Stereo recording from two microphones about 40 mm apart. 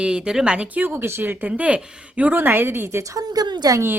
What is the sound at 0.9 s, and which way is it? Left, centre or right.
Speech, right.